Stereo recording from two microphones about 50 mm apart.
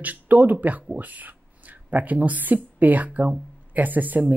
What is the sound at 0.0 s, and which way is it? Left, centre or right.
Speech, right.